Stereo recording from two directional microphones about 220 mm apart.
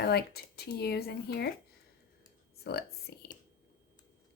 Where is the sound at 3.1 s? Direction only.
45° left (ahead or behind).